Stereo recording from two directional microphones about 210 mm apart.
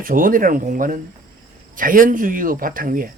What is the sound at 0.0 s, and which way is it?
Speech, 40° right (ahead or behind).